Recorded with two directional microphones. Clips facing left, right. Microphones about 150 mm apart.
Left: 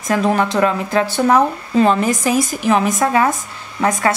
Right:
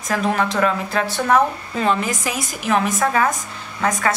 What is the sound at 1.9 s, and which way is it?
Speech, 35° left (ahead or behind).